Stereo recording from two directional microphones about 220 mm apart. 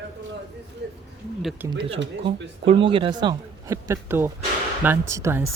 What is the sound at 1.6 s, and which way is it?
Speech, 10° right (ahead or behind).